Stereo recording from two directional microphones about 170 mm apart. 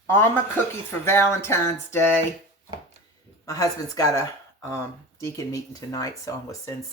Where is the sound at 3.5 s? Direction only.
20° left (ahead or behind).